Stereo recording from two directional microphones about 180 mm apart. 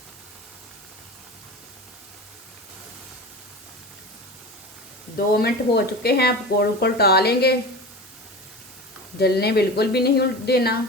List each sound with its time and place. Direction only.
5.1 s speech: 60° left (ahead or behind)
9.1 s speech: 60° left (ahead or behind)